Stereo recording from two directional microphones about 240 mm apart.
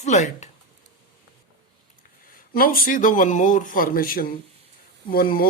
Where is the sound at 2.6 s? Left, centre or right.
Left.